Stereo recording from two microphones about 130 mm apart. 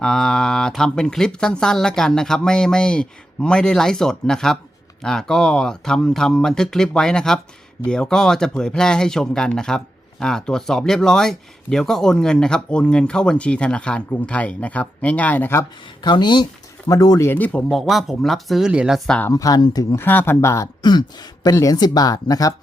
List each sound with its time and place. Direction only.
0.0 s speech: 5° left (ahead or behind)
16.0 s speech: 35° left (ahead or behind)
17.2 s a man's voice: 15° left (ahead or behind)
17.7 s speech: centre (ahead or behind)
19.3 s speech: 25° left (ahead or behind)
20.1 s speech: 15° left (ahead or behind)